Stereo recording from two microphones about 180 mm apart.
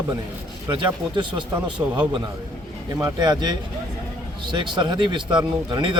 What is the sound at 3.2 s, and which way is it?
A man's voice, 25° right (ahead or behind).